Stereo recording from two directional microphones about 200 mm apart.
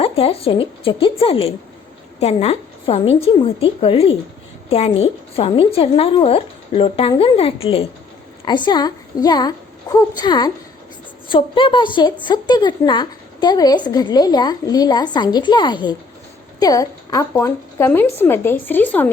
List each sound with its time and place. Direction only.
0.0 s a woman's voice: 30° left (ahead or behind); by 19.1 s 10° left (ahead or behind)